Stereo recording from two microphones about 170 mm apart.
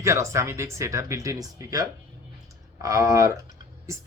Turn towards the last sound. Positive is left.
turn(degrees=-20)  # may be behind; listen again after turning